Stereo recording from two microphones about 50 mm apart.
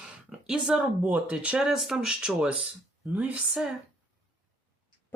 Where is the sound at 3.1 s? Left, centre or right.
Right.